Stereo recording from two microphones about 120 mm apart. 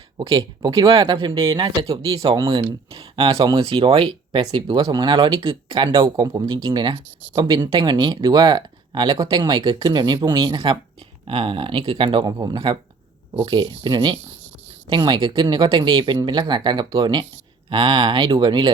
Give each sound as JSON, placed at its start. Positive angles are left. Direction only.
{"t": 0.2, "sound": "speech", "side_deg": -35}
{"t": 0.9, "sound": "speech", "side_deg": -45}
{"t": 6.1, "sound": "speech", "side_deg": -30}